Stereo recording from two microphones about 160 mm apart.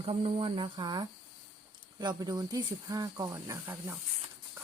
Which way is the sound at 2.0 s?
25° right (ahead or behind).